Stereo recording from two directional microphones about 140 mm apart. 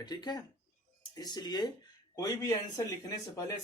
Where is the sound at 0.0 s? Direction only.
30° left (ahead or behind).